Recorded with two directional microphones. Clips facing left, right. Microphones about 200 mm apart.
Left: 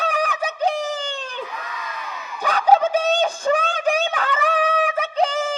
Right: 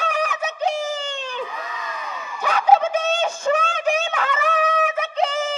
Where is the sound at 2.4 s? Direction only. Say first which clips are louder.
Even; 35° left (ahead or behind).